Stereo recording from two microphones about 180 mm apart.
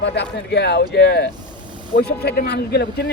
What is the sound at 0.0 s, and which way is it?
Speech, 70° left (ahead or behind).